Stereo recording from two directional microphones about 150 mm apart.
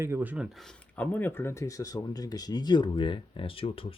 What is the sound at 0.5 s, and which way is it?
Speech, 5° left (ahead or behind).